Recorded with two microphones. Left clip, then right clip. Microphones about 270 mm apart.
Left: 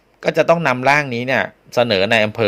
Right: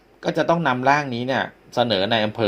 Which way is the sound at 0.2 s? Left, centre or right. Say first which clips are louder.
Left 6 dB; left.